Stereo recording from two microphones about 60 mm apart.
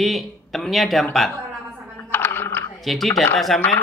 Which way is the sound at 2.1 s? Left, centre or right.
Left.